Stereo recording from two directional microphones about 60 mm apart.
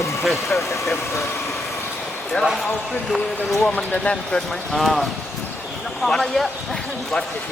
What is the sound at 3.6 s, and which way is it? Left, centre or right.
Speech, left.